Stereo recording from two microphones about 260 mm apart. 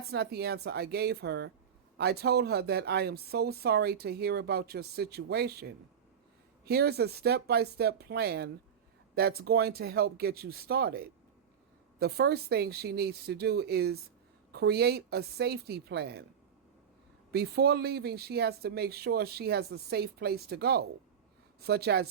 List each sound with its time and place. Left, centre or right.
0.1 s speech: right
17.3 s speech: right